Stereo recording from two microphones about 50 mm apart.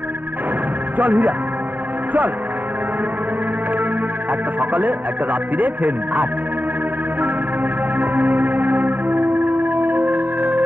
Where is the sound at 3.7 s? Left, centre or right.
Right.